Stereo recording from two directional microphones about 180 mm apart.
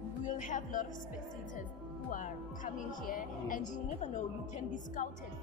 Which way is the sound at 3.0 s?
50° left (ahead or behind).